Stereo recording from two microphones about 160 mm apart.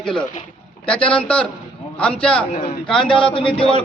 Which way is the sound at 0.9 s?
35° left (ahead or behind).